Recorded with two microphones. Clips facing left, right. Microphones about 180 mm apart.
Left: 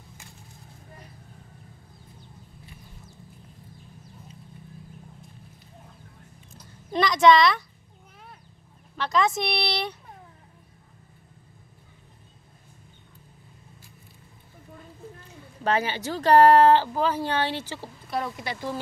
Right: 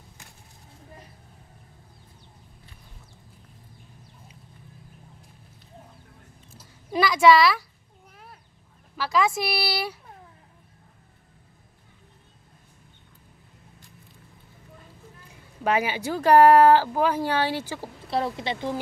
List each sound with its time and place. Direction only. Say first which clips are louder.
6.5 s a sound: right 1 dB; 5° right (ahead or behind)
8.9 s speech: even; 5° right (ahead or behind)
15.6 s a woman's voice: right 1 dB; 10° right (ahead or behind)
18.1 s a woman's voice: right 4 dB; 30° right (ahead or behind)